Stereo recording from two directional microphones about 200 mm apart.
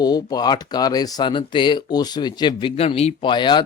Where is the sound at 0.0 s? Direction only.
20° left (ahead or behind).